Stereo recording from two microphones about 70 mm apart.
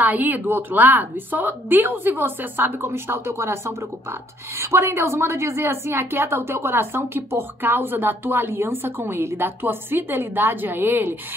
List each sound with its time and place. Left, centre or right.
0.0 s a woman's voice: right